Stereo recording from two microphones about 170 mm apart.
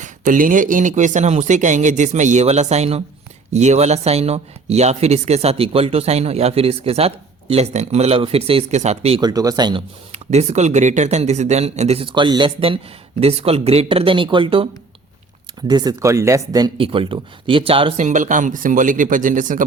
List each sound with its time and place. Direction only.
0.0 s speech: 55° right (ahead or behind)
9.2 s speech: 20° right (ahead or behind)
10.1 s speech: 40° right (ahead or behind)